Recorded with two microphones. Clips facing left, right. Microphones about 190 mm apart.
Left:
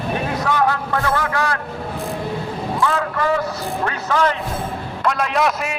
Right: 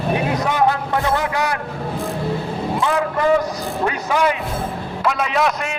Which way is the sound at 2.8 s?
15° right (ahead or behind).